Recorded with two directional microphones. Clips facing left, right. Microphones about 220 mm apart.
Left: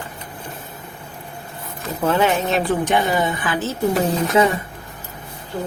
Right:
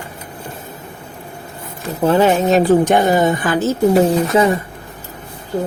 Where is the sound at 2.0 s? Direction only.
35° right (ahead or behind).